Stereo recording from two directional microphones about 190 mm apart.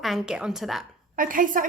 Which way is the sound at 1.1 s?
45° right (ahead or behind).